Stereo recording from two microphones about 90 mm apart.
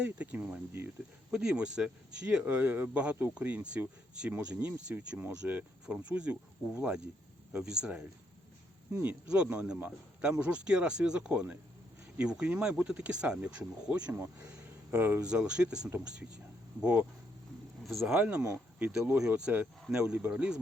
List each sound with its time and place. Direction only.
0.0 s a man's voice: 15° right (ahead or behind)
9.0 s a man's voice: 10° right (ahead or behind)
15.2 s a man's voice: 10° right (ahead or behind)
17.8 s speech: centre (ahead or behind)
18.2 s a man's voice: 15° right (ahead or behind)